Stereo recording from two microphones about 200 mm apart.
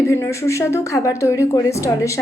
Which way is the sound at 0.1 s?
15° left (ahead or behind).